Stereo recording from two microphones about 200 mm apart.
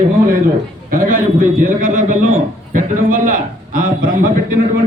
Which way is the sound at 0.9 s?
45° right (ahead or behind).